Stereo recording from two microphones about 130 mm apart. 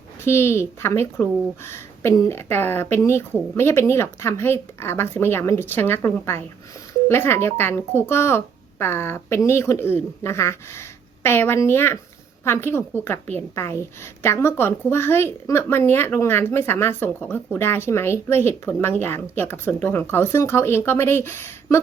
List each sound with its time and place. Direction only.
0.3 s a woman's voice: 20° left (ahead or behind)